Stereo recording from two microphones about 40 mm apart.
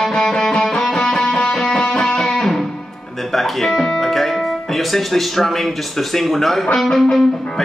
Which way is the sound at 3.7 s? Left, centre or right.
Centre.